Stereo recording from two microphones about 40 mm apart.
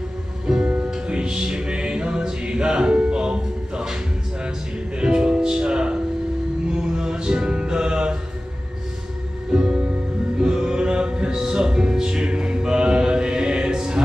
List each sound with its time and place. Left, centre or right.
0.5 s music: centre
9.5 s music: centre